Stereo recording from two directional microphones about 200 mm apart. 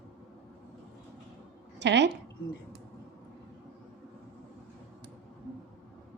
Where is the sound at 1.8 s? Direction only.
60° right (ahead or behind).